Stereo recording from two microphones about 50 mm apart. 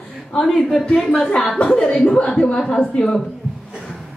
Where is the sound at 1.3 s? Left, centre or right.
Left.